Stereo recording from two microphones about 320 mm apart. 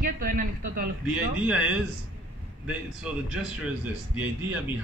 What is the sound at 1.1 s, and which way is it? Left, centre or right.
A man's voice, centre.